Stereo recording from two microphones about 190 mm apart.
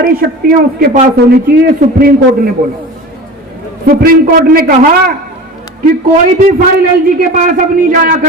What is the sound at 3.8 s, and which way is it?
Speech, 50° right (ahead or behind).